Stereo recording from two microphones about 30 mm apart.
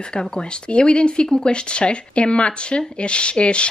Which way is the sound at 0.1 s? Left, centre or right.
Left.